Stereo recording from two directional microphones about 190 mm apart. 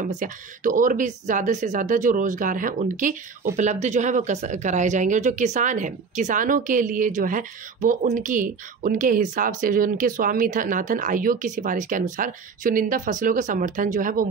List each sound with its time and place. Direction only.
0.0 s speech: 40° right (ahead or behind)